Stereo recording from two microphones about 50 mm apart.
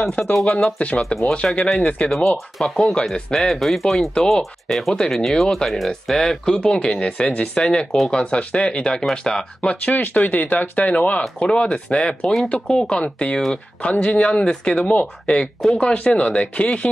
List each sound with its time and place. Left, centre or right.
0.2 s speech: centre
0.7 s speech: left
1.5 s speech: centre
1.8 s speech: left
2.0 s speech: centre; by 15.0 s left
15.2 s speech: centre